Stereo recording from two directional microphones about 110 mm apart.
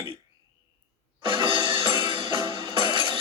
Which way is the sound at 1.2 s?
50° right (ahead or behind).